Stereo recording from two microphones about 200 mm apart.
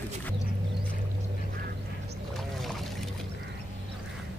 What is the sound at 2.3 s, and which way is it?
Boat, centre (ahead or behind).